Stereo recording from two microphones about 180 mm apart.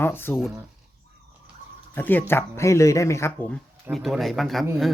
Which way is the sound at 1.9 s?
10° left (ahead or behind).